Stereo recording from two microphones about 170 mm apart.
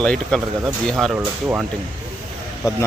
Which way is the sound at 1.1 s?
10° right (ahead or behind).